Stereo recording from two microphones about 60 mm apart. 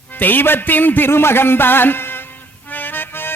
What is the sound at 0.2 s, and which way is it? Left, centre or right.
Music, left.